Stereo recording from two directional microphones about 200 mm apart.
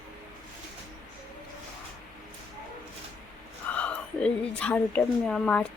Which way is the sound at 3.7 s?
5° left (ahead or behind).